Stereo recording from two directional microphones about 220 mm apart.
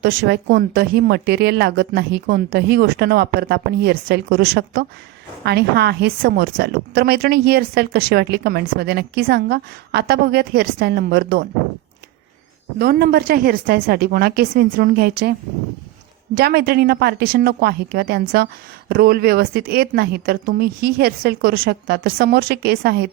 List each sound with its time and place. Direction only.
0.0 s a woman's voice: 45° right (ahead or behind)
12.8 s a woman's voice: 45° right (ahead or behind)